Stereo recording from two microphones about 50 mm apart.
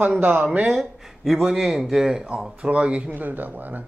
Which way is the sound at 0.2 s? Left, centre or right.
Right.